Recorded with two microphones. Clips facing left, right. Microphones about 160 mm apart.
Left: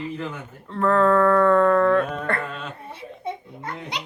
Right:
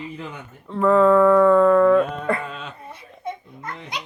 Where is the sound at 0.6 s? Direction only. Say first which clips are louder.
Right 3 dB; 5° right (ahead or behind).